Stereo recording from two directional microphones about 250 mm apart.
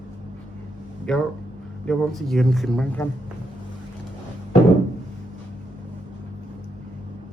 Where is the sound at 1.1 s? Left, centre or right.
Centre.